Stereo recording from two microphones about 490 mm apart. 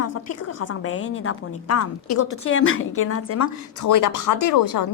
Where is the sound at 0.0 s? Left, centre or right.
Left.